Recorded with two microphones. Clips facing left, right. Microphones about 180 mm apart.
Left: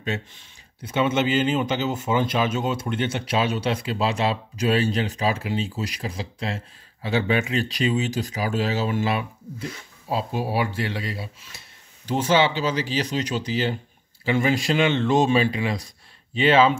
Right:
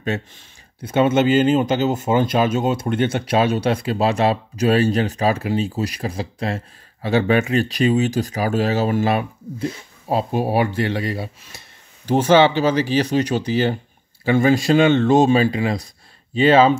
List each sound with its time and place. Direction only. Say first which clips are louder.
0.8 s speech: right 6 dB; 40° right (ahead or behind)
12.1 s speech: right 6 dB; 60° right (ahead or behind)
14.3 s speech: right 6 dB; 40° right (ahead or behind)